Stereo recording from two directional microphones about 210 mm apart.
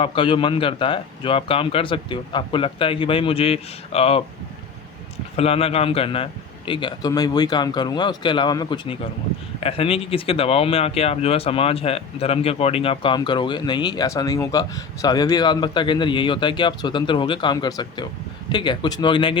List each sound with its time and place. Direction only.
0.0 s speech: 25° left (ahead or behind)
5.4 s speech: 30° left (ahead or behind)